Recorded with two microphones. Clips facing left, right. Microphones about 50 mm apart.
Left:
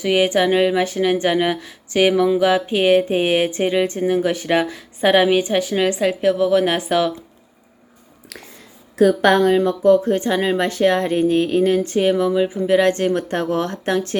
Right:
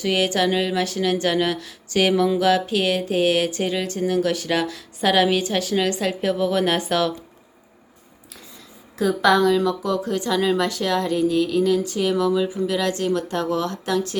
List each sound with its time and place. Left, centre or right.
0.0 s speech: centre
9.0 s speech: left